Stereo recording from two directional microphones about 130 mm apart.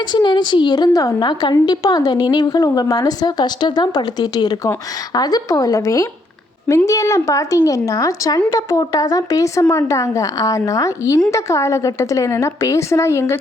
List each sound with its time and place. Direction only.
0.0 s a woman's voice: 35° left (ahead or behind)